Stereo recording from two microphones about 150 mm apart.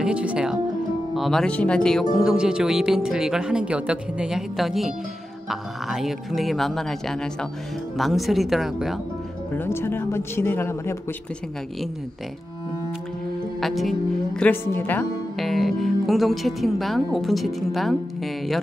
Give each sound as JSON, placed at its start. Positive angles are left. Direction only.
{"t": 0.0, "sound": "speech", "side_deg": -10}
{"t": 9.6, "sound": "speech", "side_deg": 15}
{"t": 13.6, "sound": "speech", "side_deg": 0}
{"t": 15.3, "sound": "speech", "side_deg": 0}